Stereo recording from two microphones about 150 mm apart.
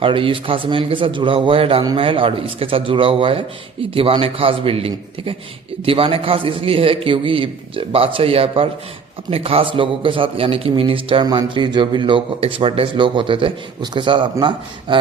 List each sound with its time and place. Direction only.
0.0 s a man's voice: 35° right (ahead or behind)